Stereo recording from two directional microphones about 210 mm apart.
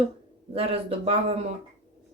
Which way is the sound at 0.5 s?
30° right (ahead or behind).